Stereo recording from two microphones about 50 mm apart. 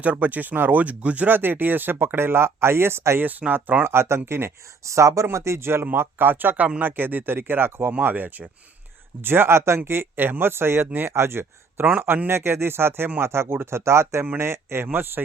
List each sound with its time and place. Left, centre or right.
0.0 s speech: right
3.5 s speech: right
3.8 s speech: right
4.8 s speech: right
5.8 s speech: right
8.0 s speech: right
9.2 s speech: right